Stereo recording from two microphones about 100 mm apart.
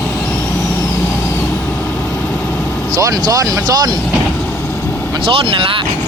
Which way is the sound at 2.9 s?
35° right (ahead or behind).